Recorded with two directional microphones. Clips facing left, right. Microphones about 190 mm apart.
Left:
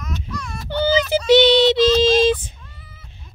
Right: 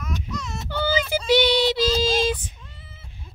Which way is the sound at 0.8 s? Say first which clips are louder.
Left 6 dB; 25° left (ahead or behind).